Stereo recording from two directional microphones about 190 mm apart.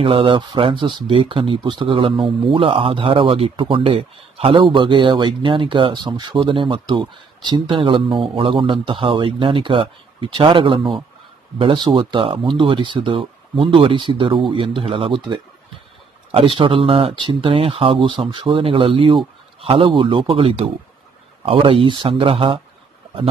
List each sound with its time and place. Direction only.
0.0 s speech: 30° right (ahead or behind)